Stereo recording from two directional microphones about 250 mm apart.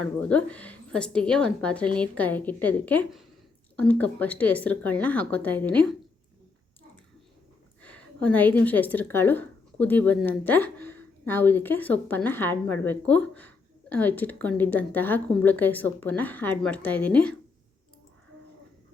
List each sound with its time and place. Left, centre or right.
0.0 s a woman's voice: centre
7.8 s speech: centre